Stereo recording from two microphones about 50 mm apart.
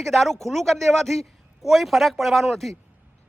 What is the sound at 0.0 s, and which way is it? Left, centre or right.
Speech, centre.